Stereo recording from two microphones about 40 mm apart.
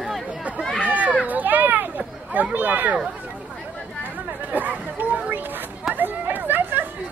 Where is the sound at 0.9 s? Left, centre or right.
Right.